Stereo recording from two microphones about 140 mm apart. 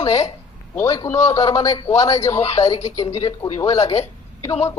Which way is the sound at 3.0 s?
25° left (ahead or behind).